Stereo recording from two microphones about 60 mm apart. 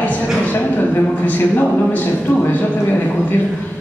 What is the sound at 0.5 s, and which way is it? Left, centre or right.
A man's voice, left.